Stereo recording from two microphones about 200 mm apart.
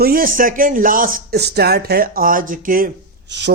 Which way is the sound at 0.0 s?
45° right (ahead or behind).